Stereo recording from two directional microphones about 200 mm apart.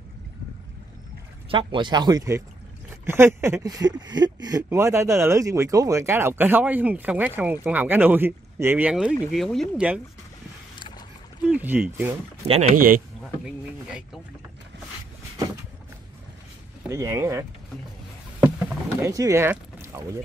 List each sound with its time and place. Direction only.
1.5 s speech: 25° right (ahead or behind); by 10.0 s 5° right (ahead or behind)
11.4 s speech: 10° right (ahead or behind)
12.4 s speech: 30° right (ahead or behind)
13.8 s speech: 5° right (ahead or behind)
16.9 s speech: 15° right (ahead or behind)
18.9 s speech: 15° right (ahead or behind)